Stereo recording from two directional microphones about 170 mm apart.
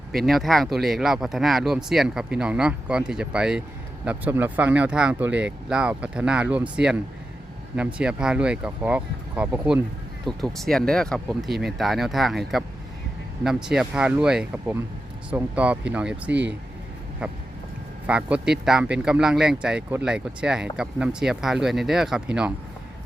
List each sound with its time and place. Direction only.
0.3 s speech: centre (ahead or behind)
10.2 s speech: centre (ahead or behind)
13.4 s speech: 5° right (ahead or behind)
16.3 s speech: 90° right
18.0 s speech: 5° right (ahead or behind)